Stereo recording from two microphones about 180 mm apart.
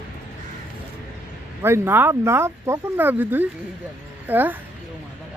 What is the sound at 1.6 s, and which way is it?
Speech, 15° right (ahead or behind).